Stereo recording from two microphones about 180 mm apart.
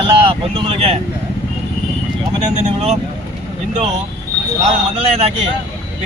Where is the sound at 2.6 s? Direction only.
40° right (ahead or behind).